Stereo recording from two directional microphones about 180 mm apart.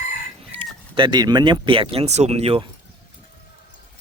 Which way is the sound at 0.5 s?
35° right (ahead or behind).